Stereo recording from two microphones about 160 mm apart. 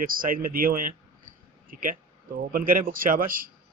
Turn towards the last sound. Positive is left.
turn(degrees=-60)  # may be behind; listen again after turning